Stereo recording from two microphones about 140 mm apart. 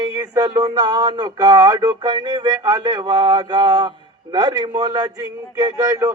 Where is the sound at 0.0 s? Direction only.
30° right (ahead or behind).